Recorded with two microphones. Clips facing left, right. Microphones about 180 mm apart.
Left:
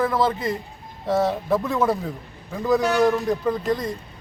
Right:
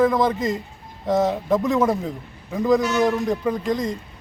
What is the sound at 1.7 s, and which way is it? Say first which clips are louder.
Speech: right 2 dB; 15° right (ahead or behind).